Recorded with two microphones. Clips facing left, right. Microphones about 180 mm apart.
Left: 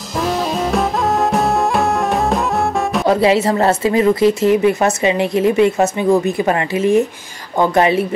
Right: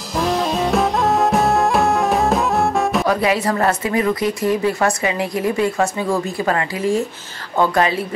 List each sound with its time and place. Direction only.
0.2 s music: centre (ahead or behind)
3.1 s speech: 25° left (ahead or behind)